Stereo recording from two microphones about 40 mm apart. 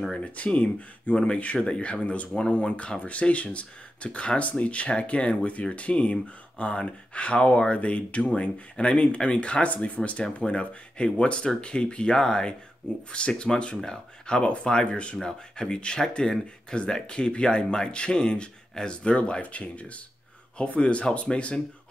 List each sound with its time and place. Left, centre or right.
0.2 s speech: left
1.1 s speech: left